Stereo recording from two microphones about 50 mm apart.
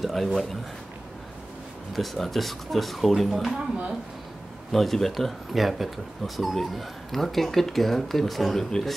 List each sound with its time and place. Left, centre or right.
0.0 s speech: centre
2.0 s speech: centre
3.5 s speech: right
4.7 s speech: centre